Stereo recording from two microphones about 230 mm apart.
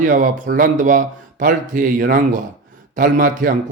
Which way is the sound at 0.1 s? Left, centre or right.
Right.